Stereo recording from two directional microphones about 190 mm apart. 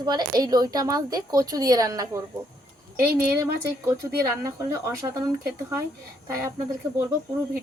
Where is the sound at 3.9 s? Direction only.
15° right (ahead or behind).